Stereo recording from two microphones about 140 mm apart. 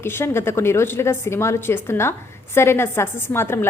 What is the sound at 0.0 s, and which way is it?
A woman's voice, 15° left (ahead or behind).